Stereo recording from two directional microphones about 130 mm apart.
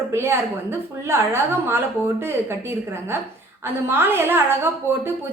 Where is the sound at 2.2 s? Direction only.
20° right (ahead or behind).